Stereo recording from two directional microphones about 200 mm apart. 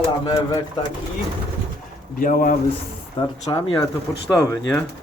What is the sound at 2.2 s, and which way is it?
Speech, 40° left (ahead or behind).